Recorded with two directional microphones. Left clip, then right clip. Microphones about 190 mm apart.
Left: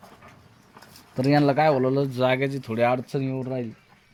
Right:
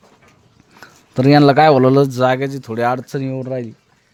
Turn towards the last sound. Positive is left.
turn(degrees=-55)  # may be behind; listen again after turning